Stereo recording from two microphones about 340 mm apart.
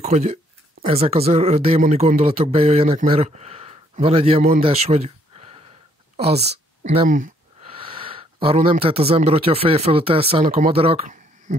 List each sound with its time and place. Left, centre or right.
0.0 s speech: centre
6.1 s speech: centre
7.8 s a sound: centre
8.8 s speech: centre